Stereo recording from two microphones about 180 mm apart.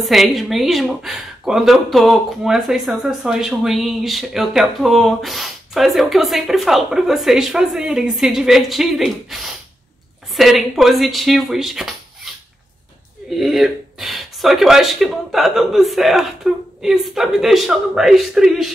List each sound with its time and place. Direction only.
0.0 s speech: centre (ahead or behind)
13.3 s speech: centre (ahead or behind)